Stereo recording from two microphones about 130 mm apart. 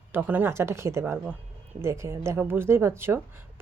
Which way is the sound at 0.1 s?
15° right (ahead or behind).